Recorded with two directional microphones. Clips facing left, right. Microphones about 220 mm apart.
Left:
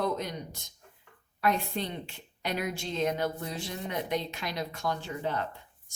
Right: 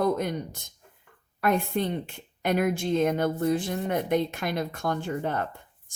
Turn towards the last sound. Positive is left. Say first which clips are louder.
# right 4 dB
turn(degrees=-50)  # may be behind; listen again after turning